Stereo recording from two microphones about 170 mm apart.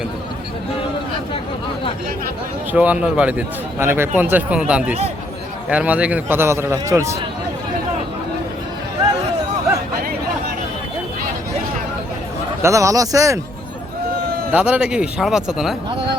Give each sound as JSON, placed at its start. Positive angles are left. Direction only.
{"t": 2.7, "sound": "a man's voice", "side_deg": -10}
{"t": 12.6, "sound": "speech", "side_deg": -20}
{"t": 14.5, "sound": "speech", "side_deg": -5}